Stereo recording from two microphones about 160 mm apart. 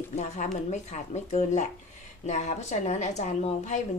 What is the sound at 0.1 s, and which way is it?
A woman's voice, 45° left (ahead or behind).